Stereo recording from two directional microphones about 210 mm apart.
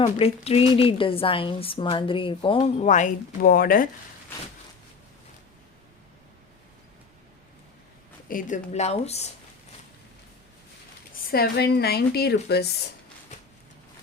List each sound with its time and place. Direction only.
0.0 s a woman's voice: 25° left (ahead or behind)
2.8 s speech: 35° left (ahead or behind)
8.3 s speech: 40° left (ahead or behind)
11.3 s speech: 50° left (ahead or behind)
13.3 s a sound: 35° left (ahead or behind)